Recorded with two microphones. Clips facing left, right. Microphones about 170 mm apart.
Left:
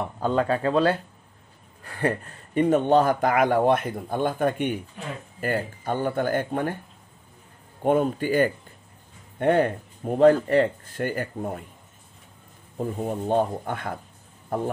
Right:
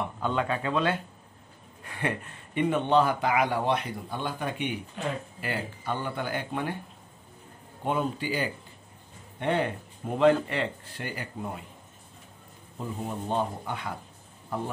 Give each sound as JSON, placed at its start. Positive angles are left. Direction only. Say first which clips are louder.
{"t": 0.2, "sound": "speech", "louder": "left 7 dB", "side_deg": 35}
{"t": 2.0, "sound": "speech", "louder": "left 6 dB", "side_deg": 40}
{"t": 7.8, "sound": "speech", "louder": "left 7 dB", "side_deg": 50}
{"t": 12.7, "sound": "speech", "louder": "left 6 dB", "side_deg": 50}